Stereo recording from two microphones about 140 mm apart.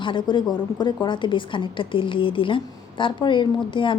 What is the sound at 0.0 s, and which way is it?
A woman's voice, 35° left (ahead or behind).